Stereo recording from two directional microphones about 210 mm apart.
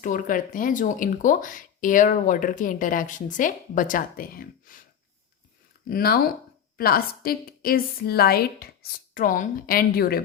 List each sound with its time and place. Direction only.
0.0 s speech: 40° left (ahead or behind)
5.9 s a woman's voice: 45° left (ahead or behind)